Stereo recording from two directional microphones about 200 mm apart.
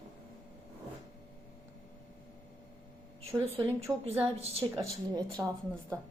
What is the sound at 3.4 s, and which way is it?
Speech, 30° right (ahead or behind).